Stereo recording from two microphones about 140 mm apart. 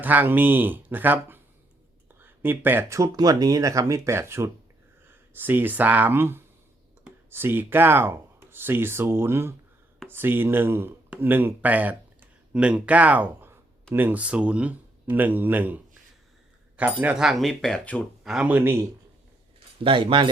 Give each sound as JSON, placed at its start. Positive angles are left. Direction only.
{"t": 0.0, "sound": "speech", "side_deg": -10}
{"t": 18.2, "sound": "speech", "side_deg": -5}
{"t": 19.5, "sound": "speech", "side_deg": -40}